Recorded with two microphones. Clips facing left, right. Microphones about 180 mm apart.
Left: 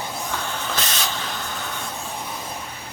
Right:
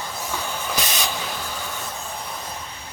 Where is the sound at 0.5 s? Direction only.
10° right (ahead or behind).